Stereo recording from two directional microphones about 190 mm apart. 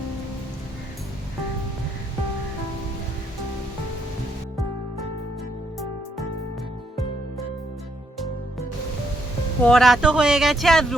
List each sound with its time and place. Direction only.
9.6 s speech: centre (ahead or behind)